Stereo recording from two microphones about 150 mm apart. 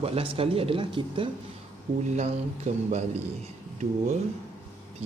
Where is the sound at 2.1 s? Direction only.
45° right (ahead or behind).